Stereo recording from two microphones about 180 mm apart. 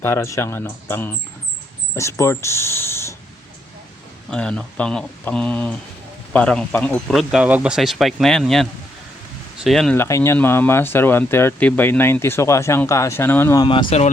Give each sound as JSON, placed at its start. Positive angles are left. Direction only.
{"t": 0.0, "sound": "speech", "side_deg": 15}
{"t": 4.3, "sound": "speech", "side_deg": 5}
{"t": 9.6, "sound": "speech", "side_deg": 0}
{"t": 10.0, "sound": "speech", "side_deg": 15}
{"t": 13.7, "sound": "speech", "side_deg": 35}